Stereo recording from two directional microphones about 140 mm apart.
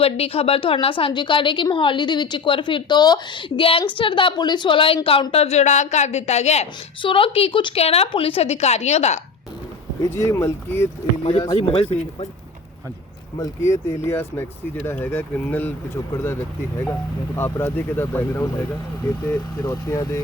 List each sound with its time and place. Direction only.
0.0 s a woman's voice: 45° left (ahead or behind)
5.3 s a woman's voice: 50° left (ahead or behind)
7.0 s a woman's voice: 40° left (ahead or behind); by 9.2 s 55° left (ahead or behind)
10.0 s speech: 20° left (ahead or behind)
11.2 s a woman's voice: 45° left (ahead or behind)
13.4 s speech: 20° left (ahead or behind)